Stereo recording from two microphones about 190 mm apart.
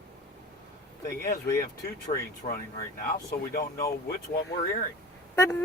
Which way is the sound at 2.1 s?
40° left (ahead or behind).